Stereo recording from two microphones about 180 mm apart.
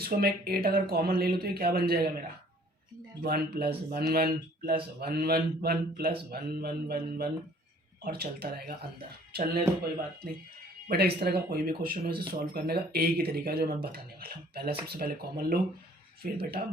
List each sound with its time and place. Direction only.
0.0 s speech: 60° right (ahead or behind)
3.2 s speech: 60° right (ahead or behind)